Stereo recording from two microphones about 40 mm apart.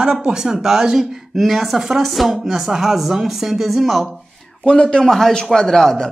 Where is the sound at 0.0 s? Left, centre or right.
Right; by 4.1 s centre.